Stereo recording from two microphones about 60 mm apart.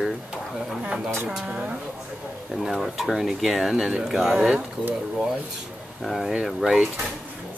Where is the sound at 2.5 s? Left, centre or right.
Centre.